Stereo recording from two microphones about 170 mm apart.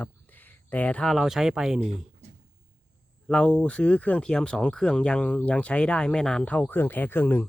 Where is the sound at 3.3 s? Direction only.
5° left (ahead or behind).